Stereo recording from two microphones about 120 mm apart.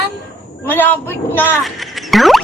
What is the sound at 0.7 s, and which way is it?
Speech, 15° left (ahead or behind).